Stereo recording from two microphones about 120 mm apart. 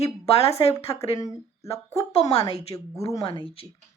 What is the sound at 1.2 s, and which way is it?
A woman's voice, 25° left (ahead or behind).